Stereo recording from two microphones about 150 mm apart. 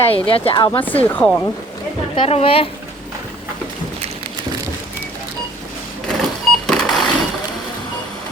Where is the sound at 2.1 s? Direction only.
40° left (ahead or behind).